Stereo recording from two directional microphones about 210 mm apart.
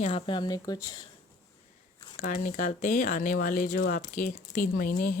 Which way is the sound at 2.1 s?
40° left (ahead or behind).